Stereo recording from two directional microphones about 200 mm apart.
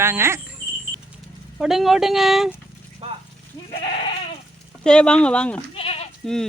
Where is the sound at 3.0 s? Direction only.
30° right (ahead or behind).